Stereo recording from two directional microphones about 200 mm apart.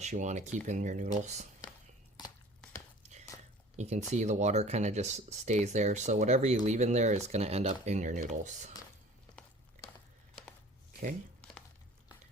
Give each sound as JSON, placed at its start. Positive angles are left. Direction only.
{"t": 0.0, "sound": "speech", "side_deg": -35}
{"t": 3.8, "sound": "speech", "side_deg": -35}